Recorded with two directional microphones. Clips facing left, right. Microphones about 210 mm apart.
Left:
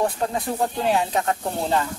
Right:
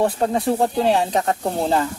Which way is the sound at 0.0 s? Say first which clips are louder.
Right 5 dB; 35° right (ahead or behind).